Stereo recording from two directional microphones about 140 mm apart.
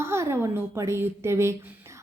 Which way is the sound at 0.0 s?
20° right (ahead or behind).